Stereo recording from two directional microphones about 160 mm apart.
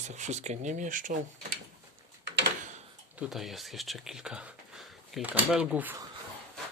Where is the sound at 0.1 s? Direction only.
45° right (ahead or behind).